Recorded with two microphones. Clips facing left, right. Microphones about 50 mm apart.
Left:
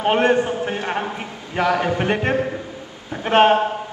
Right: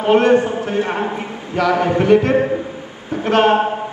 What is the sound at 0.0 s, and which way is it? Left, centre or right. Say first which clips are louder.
Speech: right 4 dB; left.